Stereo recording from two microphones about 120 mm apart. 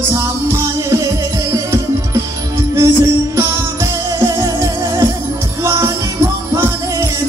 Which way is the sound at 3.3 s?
20° right (ahead or behind).